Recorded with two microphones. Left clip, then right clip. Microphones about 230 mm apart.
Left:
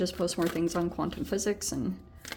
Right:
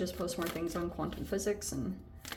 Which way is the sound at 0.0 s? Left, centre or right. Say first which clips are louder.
Left 7 dB; left.